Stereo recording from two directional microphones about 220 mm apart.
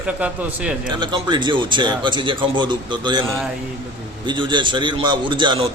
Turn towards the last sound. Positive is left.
turn(degrees=-20)  # may be behind; listen again after turning